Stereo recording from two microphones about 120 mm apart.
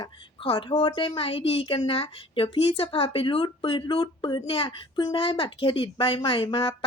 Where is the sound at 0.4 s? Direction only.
45° left (ahead or behind).